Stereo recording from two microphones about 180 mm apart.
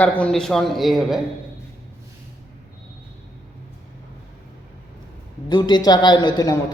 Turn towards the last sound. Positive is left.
turn(degrees=25)  # may be behind; listen again after turning